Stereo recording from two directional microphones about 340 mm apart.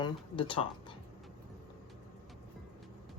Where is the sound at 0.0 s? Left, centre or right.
Centre.